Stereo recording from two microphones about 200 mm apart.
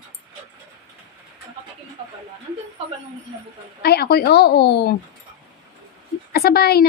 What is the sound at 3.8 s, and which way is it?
Speech, 55° left (ahead or behind).